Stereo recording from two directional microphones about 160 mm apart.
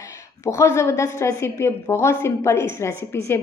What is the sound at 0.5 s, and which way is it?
A woman's voice, 15° left (ahead or behind).